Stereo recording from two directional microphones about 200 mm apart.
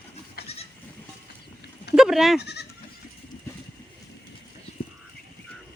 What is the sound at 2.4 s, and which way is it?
Speech, 55° left (ahead or behind).